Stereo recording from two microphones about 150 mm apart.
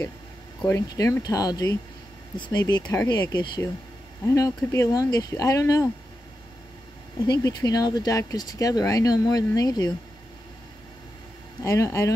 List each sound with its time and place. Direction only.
0.6 s speech: 15° left (ahead or behind)
2.8 s speech: 15° left (ahead or behind)
3.1 s speech: 30° left (ahead or behind)
7.2 s speech: 25° left (ahead or behind)
11.6 s speech: 20° left (ahead or behind)